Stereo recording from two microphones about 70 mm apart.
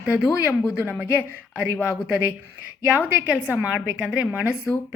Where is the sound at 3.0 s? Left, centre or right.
Centre.